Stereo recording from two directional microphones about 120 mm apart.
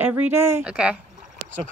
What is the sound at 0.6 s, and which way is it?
Speech, 10° right (ahead or behind).